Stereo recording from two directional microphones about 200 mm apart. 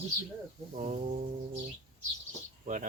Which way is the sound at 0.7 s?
40° right (ahead or behind).